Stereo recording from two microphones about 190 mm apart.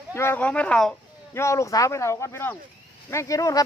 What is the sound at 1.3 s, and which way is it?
Speech, 15° left (ahead or behind).